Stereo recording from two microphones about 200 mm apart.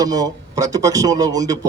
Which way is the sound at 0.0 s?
20° right (ahead or behind).